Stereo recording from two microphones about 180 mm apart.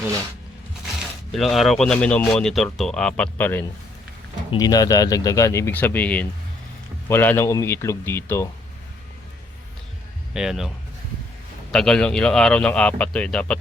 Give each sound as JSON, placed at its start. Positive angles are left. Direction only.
{"t": 1.3, "sound": "speech", "side_deg": 0}
{"t": 10.3, "sound": "speech", "side_deg": -5}
{"t": 11.7, "sound": "speech", "side_deg": 5}